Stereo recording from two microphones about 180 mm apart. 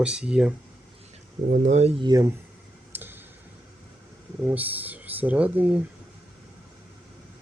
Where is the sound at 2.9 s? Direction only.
10° right (ahead or behind).